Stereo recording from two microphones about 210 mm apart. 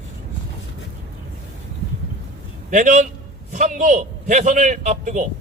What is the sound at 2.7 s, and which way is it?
A man's voice, 35° right (ahead or behind).